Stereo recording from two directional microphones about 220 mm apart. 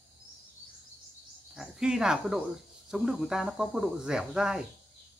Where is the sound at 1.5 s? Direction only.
5° right (ahead or behind).